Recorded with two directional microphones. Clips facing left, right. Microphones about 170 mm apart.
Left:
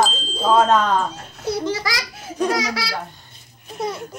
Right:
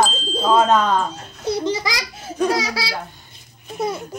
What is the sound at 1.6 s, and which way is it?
Speech, 20° right (ahead or behind).